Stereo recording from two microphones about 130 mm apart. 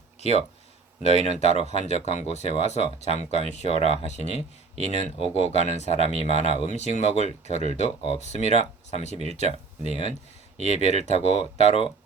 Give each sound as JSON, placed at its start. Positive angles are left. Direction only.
{"t": 0.2, "sound": "speech", "side_deg": 55}